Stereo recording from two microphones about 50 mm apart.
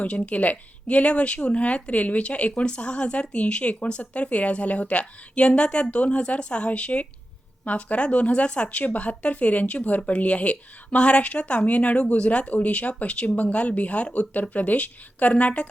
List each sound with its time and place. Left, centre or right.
0.0 s speech: left